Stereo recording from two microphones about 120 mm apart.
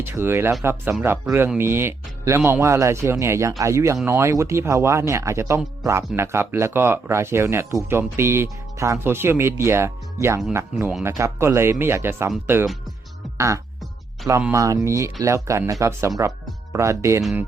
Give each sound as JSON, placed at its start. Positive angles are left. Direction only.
{"t": 0.0, "sound": "speech", "side_deg": -20}
{"t": 13.3, "sound": "speech", "side_deg": -25}